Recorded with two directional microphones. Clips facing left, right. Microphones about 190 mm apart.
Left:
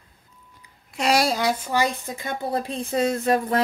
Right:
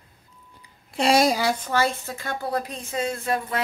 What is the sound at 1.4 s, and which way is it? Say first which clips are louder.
A woman's voice: even; 5° left (ahead or behind).